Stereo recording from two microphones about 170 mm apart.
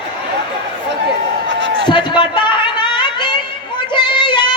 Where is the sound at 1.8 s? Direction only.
30° left (ahead or behind).